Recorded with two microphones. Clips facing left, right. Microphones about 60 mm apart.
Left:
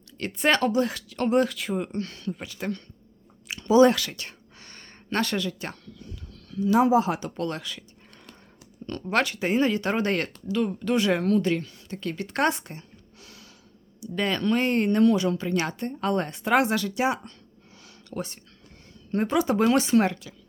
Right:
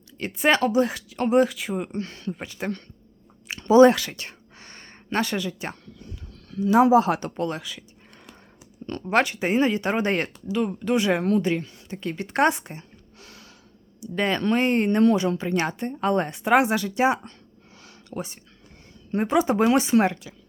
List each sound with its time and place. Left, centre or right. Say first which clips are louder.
0.2 s speech: right 2 dB; centre
2.0 s speech: right 1 dB; right
3.5 s a sound: right 3 dB; right
3.8 s a sound: right 3 dB; right
5.0 s speech: right 1 dB; centre; by 6.7 s right
6.7 s speech: right 4 dB; right
7.3 s speech: right 2 dB; centre
7.6 s speech: even; centre
8.9 s speech: right 3 dB; right
13.1 s gasp: right 2 dB; right
14.0 s speech: right 2 dB; right
16.9 s speech: right 4 dB; right
18.1 s speech: even; centre